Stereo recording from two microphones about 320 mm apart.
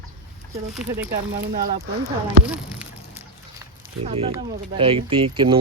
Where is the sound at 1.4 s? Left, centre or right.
Right.